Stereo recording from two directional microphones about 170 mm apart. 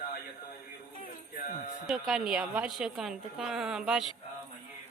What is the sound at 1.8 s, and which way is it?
A woman's voice, centre (ahead or behind).